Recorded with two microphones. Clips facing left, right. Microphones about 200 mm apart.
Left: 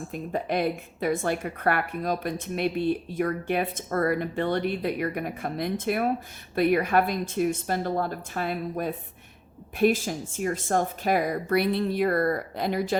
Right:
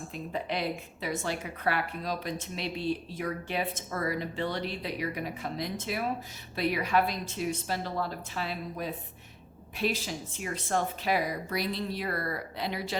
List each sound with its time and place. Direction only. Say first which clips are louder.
0.1 s a woman's voice: left 6 dB; 50° left (ahead or behind)